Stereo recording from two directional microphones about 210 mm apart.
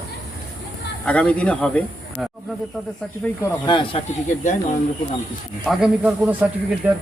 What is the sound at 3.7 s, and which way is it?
Speech, 20° left (ahead or behind).